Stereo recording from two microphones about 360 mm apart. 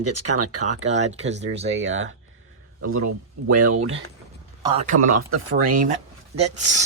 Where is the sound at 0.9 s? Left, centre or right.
Centre.